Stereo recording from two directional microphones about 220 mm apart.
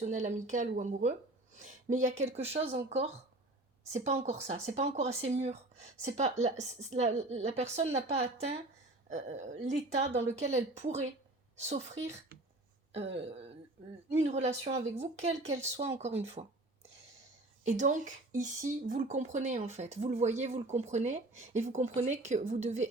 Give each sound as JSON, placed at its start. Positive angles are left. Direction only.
{"t": 0.0, "sound": "speech", "side_deg": -35}
{"t": 14.9, "sound": "speech", "side_deg": -30}